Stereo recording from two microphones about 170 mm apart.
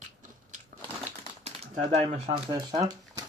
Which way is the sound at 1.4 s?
35° right (ahead or behind).